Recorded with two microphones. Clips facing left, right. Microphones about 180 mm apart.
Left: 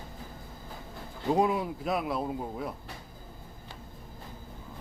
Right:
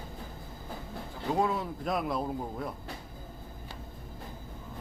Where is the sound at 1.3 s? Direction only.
15° left (ahead or behind).